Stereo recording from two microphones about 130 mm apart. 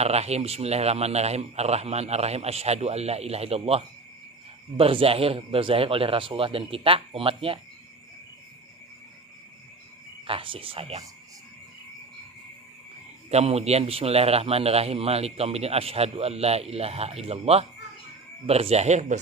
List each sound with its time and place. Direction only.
0.0 s a man's voice: 55° right (ahead or behind)
10.2 s a man's voice: 45° right (ahead or behind)
13.3 s a man's voice: 55° right (ahead or behind)